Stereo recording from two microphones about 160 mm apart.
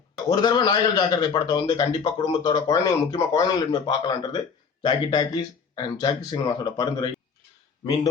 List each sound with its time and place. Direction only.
0.3 s a man's voice: 25° left (ahead or behind)